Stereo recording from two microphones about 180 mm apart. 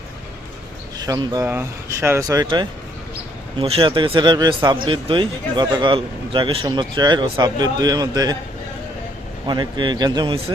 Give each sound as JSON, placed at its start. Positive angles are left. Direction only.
{"t": 0.9, "sound": "speech", "side_deg": -20}
{"t": 9.5, "sound": "speech", "side_deg": -25}